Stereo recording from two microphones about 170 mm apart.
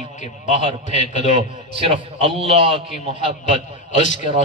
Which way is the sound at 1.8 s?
35° right (ahead or behind).